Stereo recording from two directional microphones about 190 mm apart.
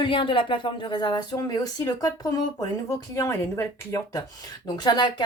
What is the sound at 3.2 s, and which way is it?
Speech, 15° left (ahead or behind).